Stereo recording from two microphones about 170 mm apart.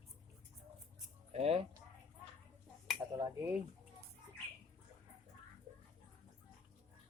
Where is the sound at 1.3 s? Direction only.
40° right (ahead or behind).